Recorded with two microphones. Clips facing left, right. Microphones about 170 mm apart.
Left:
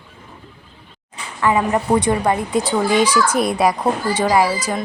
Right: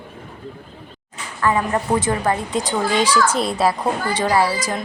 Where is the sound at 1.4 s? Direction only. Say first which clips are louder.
Left 2 dB; 15° left (ahead or behind).